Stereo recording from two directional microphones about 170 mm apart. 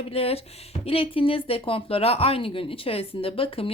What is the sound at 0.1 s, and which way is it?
A woman's voice, 35° left (ahead or behind).